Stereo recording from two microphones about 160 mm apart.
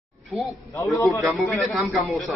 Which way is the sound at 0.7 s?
20° left (ahead or behind).